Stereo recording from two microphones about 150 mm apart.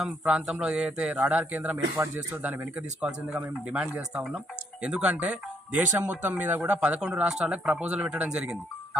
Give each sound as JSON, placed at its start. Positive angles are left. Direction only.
{"t": 0.0, "sound": "speech", "side_deg": -5}